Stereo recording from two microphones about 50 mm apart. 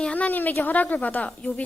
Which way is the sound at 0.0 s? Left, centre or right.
Left.